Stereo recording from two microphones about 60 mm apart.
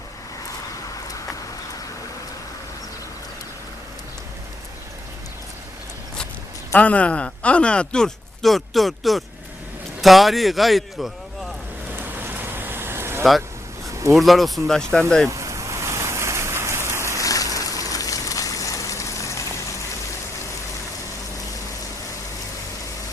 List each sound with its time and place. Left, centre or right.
6.7 s speech: left; by 11.1 s centre
11.9 s vehicle: right
13.8 s a sound: right
14.2 s speech: centre
15.3 s rain: right
17.2 s a sound: left